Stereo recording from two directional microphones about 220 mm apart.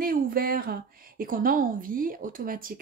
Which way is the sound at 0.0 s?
40° right (ahead or behind).